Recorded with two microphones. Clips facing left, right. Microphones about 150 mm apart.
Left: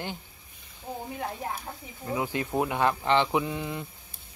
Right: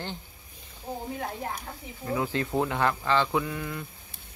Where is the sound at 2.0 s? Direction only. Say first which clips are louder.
Right 1 dB; 15° left (ahead or behind).